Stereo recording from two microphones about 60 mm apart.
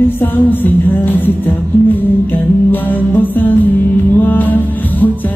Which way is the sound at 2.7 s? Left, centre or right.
Left.